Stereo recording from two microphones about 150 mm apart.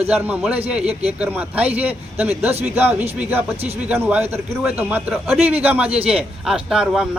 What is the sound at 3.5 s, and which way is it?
Speech, 45° right (ahead or behind).